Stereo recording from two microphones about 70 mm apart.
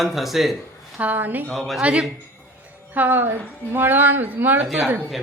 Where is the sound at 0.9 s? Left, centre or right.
Right.